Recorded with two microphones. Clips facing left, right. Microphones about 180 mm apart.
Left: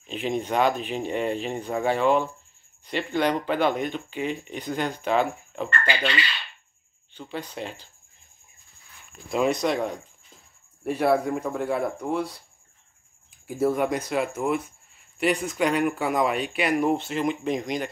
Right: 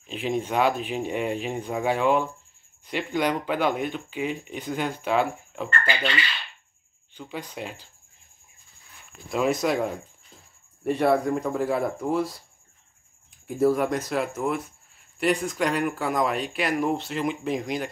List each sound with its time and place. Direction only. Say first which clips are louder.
0.0 s speech: even; 5° right (ahead or behind)
7.2 s speech: left 1 dB; 10° right (ahead or behind)
9.3 s speech: even; centre (ahead or behind)
13.7 s speech: right 1 dB; centre (ahead or behind)